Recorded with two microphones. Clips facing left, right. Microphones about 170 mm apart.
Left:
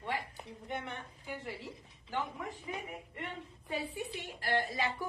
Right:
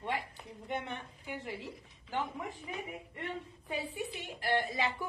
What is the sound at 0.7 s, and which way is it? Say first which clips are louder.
A woman's voice: right 3 dB; 15° right (ahead or behind).